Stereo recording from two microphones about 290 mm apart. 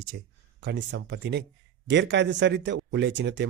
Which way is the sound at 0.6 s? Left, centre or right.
Right.